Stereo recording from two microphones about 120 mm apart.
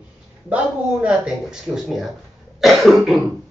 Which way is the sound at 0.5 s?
5° right (ahead or behind).